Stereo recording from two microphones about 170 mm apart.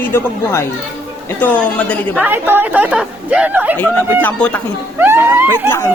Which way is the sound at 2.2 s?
10° right (ahead or behind).